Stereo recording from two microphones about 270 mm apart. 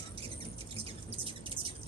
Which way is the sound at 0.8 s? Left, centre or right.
Right.